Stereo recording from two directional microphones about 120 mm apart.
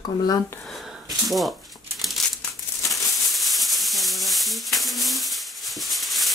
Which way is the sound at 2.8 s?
Centre (ahead or behind).